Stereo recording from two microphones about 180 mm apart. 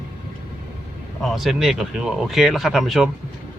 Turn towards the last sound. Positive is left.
turn(degrees=0)  # may be behind; listen again after turning